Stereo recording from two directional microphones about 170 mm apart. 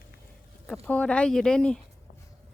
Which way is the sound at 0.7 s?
5° left (ahead or behind).